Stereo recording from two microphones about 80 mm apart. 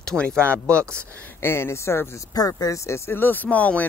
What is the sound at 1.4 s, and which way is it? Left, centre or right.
Speech, left.